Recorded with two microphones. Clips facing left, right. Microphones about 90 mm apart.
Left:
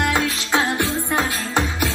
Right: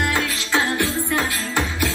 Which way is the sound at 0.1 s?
20° left (ahead or behind).